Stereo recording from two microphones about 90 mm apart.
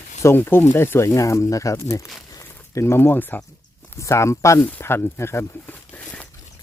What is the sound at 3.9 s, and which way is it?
Speech, 30° left (ahead or behind).